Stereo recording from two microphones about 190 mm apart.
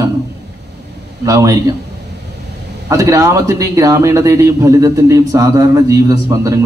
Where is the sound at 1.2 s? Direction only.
15° right (ahead or behind).